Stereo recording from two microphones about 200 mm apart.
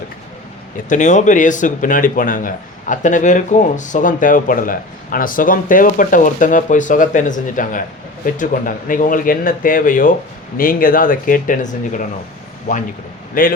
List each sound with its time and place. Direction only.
0.9 s speech: 35° left (ahead or behind)